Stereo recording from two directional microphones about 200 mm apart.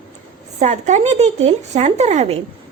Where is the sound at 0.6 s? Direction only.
35° right (ahead or behind).